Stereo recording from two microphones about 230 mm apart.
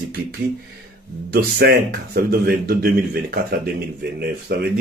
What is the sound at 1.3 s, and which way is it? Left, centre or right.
Speech, right.